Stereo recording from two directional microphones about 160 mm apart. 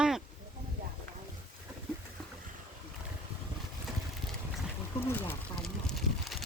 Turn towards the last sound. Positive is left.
turn(degrees=0)  # may be behind; listen again after turning